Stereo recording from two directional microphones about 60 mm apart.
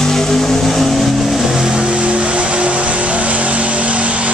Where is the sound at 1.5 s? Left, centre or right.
Centre.